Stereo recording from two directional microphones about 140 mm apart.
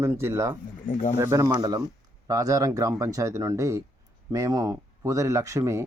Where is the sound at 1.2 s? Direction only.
20° right (ahead or behind).